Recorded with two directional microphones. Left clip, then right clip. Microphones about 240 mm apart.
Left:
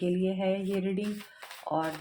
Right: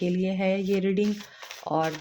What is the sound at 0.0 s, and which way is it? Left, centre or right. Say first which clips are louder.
Speech: right 2 dB; right.